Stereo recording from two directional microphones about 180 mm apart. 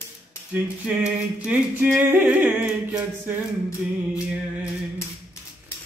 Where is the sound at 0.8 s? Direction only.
5° right (ahead or behind).